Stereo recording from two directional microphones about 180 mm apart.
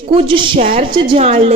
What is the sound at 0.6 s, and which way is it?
Speech, 45° right (ahead or behind).